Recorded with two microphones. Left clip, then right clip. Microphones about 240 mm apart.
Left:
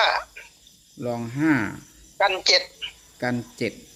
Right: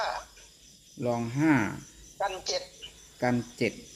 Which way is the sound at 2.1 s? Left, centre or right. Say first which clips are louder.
Left 12 dB; left.